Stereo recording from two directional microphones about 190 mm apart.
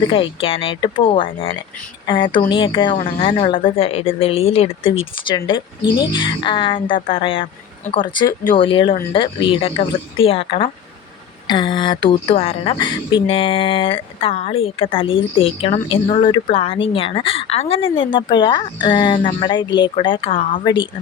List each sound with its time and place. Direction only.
0.1 s a woman's voice: 30° left (ahead or behind)